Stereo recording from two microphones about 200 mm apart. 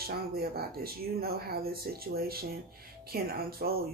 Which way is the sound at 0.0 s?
50° right (ahead or behind).